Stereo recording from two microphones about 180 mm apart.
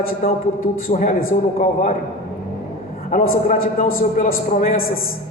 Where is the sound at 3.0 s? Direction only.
50° left (ahead or behind).